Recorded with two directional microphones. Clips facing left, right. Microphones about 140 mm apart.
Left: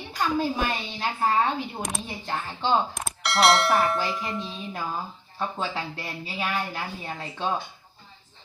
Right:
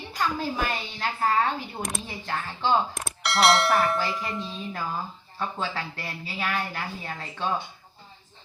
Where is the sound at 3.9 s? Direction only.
20° left (ahead or behind).